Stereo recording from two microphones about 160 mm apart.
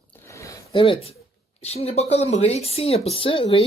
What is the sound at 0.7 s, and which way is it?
Speech, 30° left (ahead or behind).